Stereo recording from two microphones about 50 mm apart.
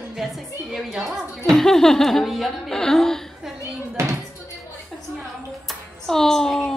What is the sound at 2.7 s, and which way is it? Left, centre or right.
Speech, centre.